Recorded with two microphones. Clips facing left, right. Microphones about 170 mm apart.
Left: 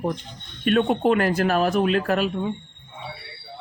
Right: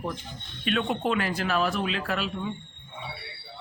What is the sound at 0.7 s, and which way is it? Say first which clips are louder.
Speech: left 7 dB; 45° left (ahead or behind).